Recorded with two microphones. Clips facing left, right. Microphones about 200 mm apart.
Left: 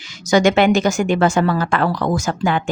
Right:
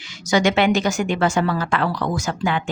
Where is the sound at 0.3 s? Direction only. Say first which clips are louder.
Left 4 dB; 45° left (ahead or behind).